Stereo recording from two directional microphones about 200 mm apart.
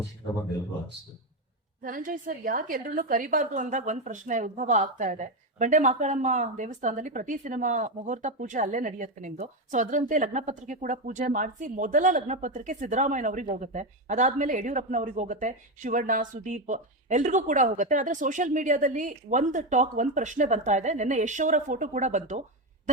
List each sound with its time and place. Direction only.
1.8 s a woman's voice: 45° right (ahead or behind)